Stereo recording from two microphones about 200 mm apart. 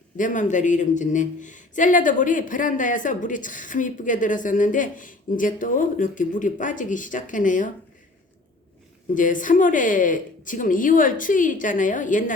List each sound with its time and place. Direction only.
0.2 s speech: 40° left (ahead or behind)
9.1 s speech: 40° left (ahead or behind)